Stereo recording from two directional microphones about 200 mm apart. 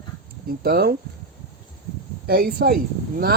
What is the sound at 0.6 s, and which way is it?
Speech, 50° right (ahead or behind).